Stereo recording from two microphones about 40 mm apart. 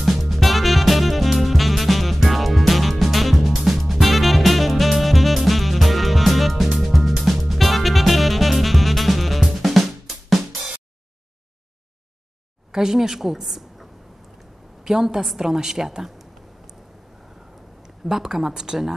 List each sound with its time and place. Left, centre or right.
0.0 s music: centre
12.7 s a woman's voice: centre
17.8 s speech: centre